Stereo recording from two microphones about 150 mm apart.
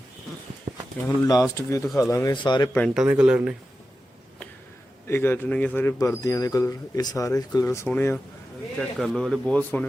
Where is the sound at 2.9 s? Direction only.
5° right (ahead or behind).